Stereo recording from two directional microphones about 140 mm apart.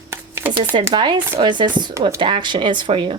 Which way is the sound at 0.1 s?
15° right (ahead or behind).